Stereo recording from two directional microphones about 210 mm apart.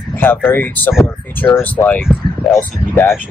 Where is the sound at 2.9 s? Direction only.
10° left (ahead or behind).